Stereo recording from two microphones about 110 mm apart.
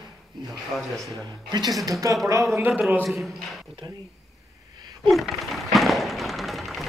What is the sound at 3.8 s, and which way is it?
Speech, 40° right (ahead or behind).